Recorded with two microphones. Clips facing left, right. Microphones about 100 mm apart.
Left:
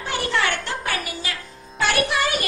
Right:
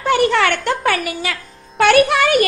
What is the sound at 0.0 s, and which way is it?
A woman's voice, 70° right (ahead or behind).